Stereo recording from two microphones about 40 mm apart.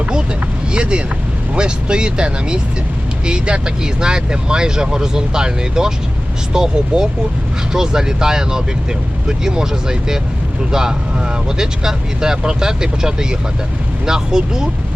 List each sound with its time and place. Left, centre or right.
0.0 s speech: right